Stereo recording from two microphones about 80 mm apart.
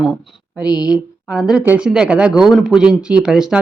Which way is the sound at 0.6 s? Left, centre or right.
Left.